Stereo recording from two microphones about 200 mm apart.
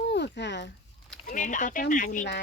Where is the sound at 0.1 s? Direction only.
60° left (ahead or behind).